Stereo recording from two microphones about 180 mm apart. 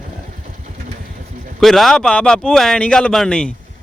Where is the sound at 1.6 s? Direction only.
Centre (ahead or behind).